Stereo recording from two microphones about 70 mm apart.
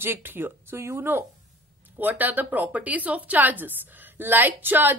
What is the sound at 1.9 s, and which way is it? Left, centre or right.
A woman's voice, right.